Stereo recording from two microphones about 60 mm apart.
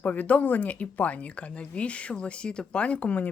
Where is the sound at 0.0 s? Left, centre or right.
Left.